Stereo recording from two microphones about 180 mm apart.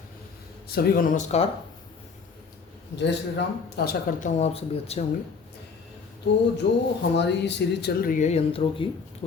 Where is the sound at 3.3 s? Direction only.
65° left (ahead or behind).